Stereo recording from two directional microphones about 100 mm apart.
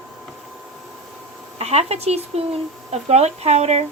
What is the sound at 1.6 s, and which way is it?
Speech, 90° right.